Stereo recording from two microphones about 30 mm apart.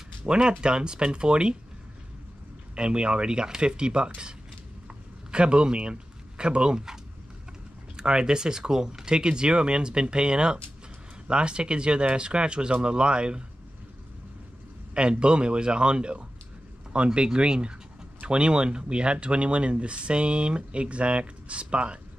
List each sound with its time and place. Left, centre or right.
0.2 s speech: right
2.7 s speech: right
4.8 s a sound: right
7.9 s speech: right
15.0 s speech: right